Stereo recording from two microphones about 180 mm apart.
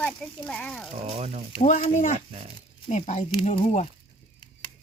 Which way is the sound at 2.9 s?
40° left (ahead or behind).